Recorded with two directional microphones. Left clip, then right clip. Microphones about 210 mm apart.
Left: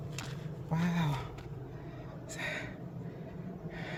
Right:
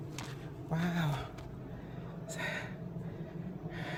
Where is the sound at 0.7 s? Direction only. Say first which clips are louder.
Left 1 dB; 10° right (ahead or behind).